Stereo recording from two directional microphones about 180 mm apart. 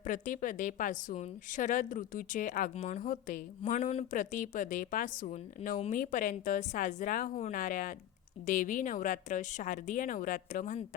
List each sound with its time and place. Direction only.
0.0 s a woman's voice: 45° left (ahead or behind)
3.7 s a woman's voice: 40° left (ahead or behind)